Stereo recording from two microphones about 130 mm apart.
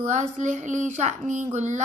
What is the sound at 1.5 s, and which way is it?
Speech, 65° right (ahead or behind).